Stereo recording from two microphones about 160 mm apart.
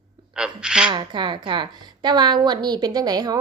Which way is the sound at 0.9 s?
30° right (ahead or behind).